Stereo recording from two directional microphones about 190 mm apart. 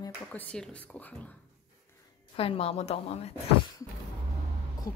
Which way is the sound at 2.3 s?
30° left (ahead or behind).